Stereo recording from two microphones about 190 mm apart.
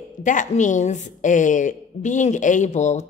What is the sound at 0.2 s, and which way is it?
A woman's voice, 40° left (ahead or behind).